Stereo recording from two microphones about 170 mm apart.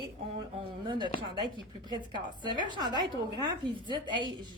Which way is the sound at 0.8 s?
30° right (ahead or behind).